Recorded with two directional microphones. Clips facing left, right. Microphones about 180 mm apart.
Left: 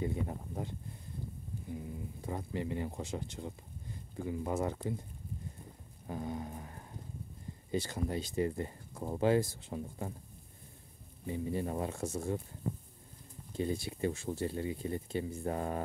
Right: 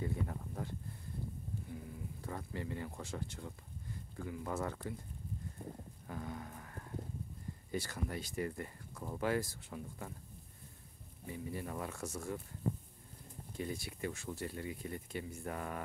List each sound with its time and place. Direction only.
0.0 s speech: 20° left (ahead or behind)
6.0 s a sound: 20° left (ahead or behind)
7.7 s speech: 20° left (ahead or behind)
11.2 s speech: 25° left (ahead or behind)
13.5 s speech: 25° left (ahead or behind)